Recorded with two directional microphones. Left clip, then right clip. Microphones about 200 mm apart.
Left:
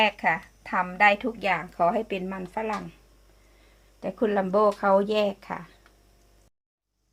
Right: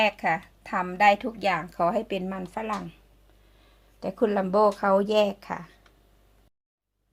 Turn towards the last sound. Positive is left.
turn(degrees=-20)  # may be behind; listen again after turning